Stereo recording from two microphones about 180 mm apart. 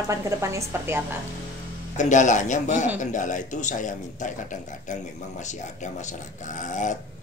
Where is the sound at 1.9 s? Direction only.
45° left (ahead or behind).